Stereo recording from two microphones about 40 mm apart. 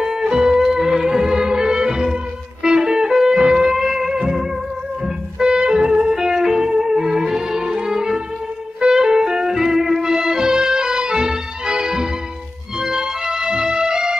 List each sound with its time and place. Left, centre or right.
0.0 s music: centre
6.1 s music: centre